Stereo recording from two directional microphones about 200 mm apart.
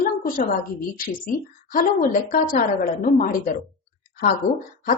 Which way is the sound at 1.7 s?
40° left (ahead or behind).